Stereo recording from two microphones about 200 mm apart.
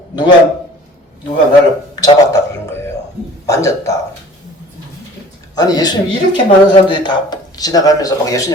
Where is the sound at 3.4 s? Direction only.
15° left (ahead or behind).